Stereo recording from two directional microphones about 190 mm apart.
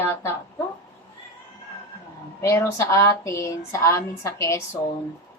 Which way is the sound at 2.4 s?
15° left (ahead or behind).